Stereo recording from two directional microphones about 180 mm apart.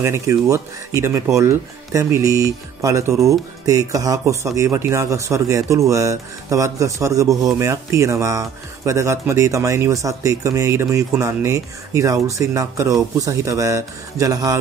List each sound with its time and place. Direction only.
0.0 s speech: 15° right (ahead or behind)